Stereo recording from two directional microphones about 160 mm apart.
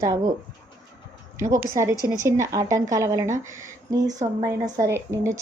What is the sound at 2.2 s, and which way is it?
A woman's voice, 20° right (ahead or behind).